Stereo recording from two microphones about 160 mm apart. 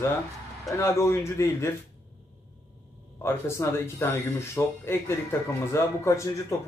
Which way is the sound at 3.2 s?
15° left (ahead or behind).